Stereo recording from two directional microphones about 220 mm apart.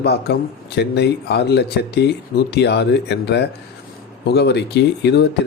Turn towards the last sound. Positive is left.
turn(degrees=50)  # may be behind; listen again after turning